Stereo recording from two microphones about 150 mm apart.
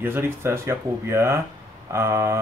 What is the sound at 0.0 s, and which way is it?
Speech, 15° right (ahead or behind).